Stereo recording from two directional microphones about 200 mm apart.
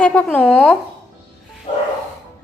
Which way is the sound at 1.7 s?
35° left (ahead or behind).